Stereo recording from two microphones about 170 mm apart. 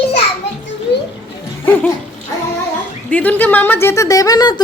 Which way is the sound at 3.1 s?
10° left (ahead or behind).